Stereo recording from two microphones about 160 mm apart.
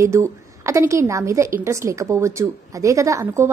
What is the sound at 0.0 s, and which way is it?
A woman's voice, 15° right (ahead or behind).